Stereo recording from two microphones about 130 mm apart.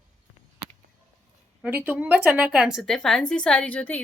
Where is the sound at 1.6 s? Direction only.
15° right (ahead or behind).